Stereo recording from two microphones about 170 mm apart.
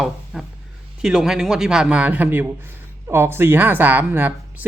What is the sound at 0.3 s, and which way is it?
A man's voice, centre (ahead or behind).